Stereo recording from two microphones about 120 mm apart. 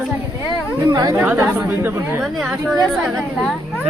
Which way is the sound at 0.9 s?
30° right (ahead or behind).